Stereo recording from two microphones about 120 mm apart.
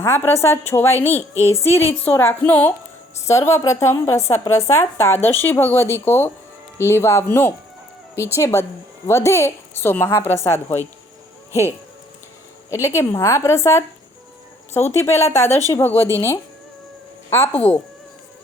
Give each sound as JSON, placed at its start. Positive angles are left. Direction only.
{"t": 0.0, "sound": "a woman's voice", "side_deg": 20}
{"t": 12.7, "sound": "a woman's voice", "side_deg": 25}